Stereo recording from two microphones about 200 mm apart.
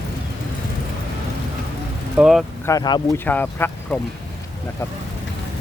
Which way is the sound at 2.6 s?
20° left (ahead or behind).